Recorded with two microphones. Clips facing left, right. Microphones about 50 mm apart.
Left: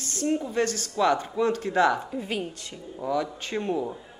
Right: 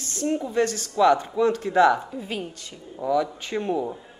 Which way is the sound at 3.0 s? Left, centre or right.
Centre.